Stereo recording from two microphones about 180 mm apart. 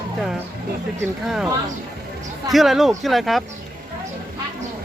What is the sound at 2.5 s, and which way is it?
Speech, centre (ahead or behind).